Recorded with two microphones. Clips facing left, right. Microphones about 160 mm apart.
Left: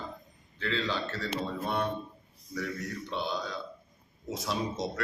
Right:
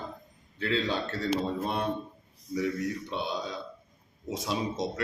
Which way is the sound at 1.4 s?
25° right (ahead or behind).